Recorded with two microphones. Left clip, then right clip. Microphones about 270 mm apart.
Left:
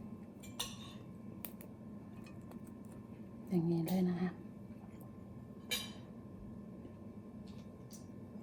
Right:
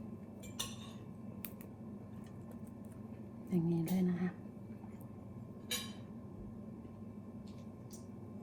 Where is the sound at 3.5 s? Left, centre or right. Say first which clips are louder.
Left 1 dB; left.